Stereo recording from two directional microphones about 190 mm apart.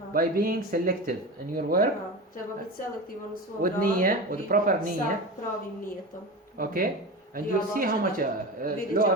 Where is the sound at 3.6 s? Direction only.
50° right (ahead or behind).